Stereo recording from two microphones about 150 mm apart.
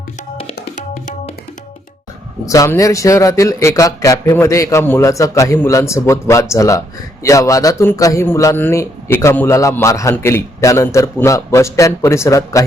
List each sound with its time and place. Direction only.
0.6 s tabla: 55° left (ahead or behind)
2.5 s speech: 20° left (ahead or behind)